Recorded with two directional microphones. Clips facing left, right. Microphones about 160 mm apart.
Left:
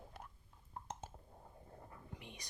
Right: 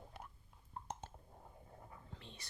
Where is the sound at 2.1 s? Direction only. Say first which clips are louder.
Left 2 dB; 15° left (ahead or behind).